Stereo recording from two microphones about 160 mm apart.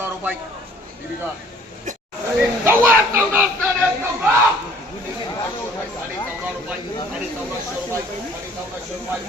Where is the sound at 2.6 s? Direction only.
15° right (ahead or behind).